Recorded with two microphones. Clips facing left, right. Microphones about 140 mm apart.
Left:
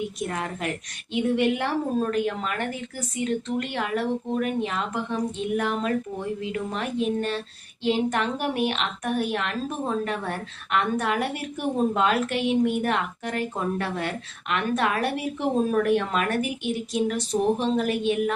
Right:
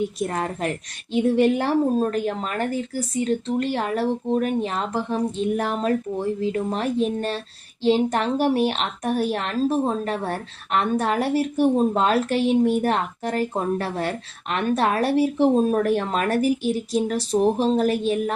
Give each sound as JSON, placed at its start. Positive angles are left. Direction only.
{"t": 0.2, "sound": "a woman's voice", "side_deg": -35}